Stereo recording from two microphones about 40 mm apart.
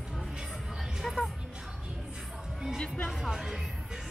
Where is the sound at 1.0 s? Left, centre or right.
Centre.